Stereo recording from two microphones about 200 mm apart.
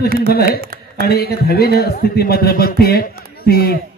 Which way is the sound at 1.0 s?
50° left (ahead or behind).